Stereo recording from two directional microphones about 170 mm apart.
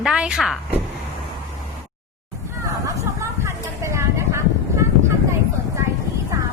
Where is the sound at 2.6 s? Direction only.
20° right (ahead or behind).